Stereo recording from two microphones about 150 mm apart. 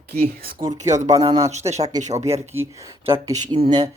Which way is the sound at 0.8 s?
50° right (ahead or behind).